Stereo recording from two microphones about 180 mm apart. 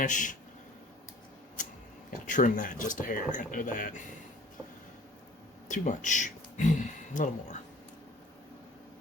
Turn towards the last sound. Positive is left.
turn(degrees=45)  # may be behind; listen again after turning